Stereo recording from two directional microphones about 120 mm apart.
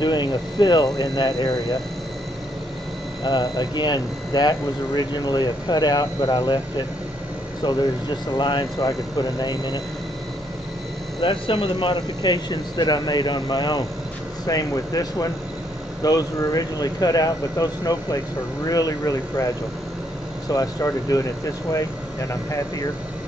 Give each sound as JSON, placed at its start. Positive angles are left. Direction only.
{"t": 0.0, "sound": "speech", "side_deg": 35}
{"t": 3.3, "sound": "speech", "side_deg": 35}
{"t": 7.6, "sound": "speech", "side_deg": 40}
{"t": 11.1, "sound": "speech", "side_deg": 45}
{"t": 11.9, "sound": "speech", "side_deg": 35}